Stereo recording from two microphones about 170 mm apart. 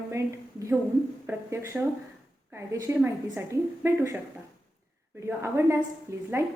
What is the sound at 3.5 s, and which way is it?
Speech, 15° right (ahead or behind).